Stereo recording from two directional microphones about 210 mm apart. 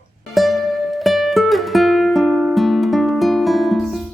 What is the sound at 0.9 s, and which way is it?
Music, centre (ahead or behind).